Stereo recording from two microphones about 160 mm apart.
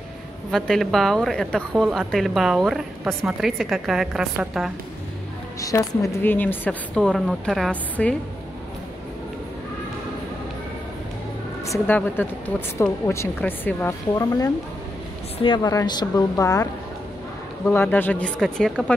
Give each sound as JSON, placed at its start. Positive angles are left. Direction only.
{"t": 0.5, "sound": "a woman's voice", "side_deg": 0}
{"t": 5.6, "sound": "a woman's voice", "side_deg": 20}
{"t": 11.6, "sound": "a woman's voice", "side_deg": 15}
{"t": 17.7, "sound": "a woman's voice", "side_deg": 10}